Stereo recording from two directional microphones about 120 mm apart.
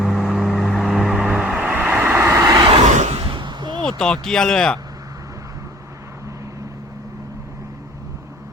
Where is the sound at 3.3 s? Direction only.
40° right (ahead or behind).